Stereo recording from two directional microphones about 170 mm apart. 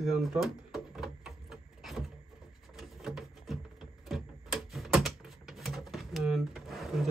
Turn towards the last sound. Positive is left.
turn(degrees=0)  # may be behind; listen again after turning